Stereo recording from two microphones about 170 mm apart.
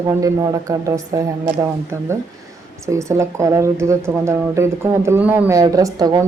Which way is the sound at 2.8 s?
15° right (ahead or behind).